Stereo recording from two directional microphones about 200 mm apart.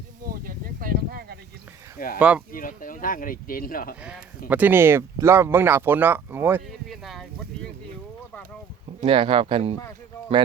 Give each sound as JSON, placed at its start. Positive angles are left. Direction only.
{"t": 0.3, "sound": "a sound", "side_deg": -45}
{"t": 2.1, "sound": "speech", "side_deg": -5}
{"t": 2.5, "sound": "speech", "side_deg": 45}
{"t": 4.4, "sound": "speech", "side_deg": -10}
{"t": 6.8, "sound": "a sound", "side_deg": 0}
{"t": 9.0, "sound": "speech", "side_deg": -25}